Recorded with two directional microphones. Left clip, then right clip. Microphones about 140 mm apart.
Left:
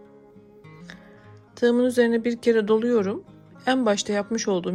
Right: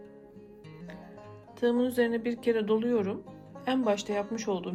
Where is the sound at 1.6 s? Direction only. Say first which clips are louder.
Left 7 dB; 45° left (ahead or behind).